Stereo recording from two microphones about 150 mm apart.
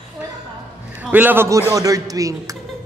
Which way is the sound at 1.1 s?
15° right (ahead or behind).